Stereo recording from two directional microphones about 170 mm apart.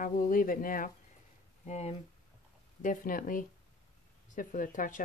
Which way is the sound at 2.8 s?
50° left (ahead or behind).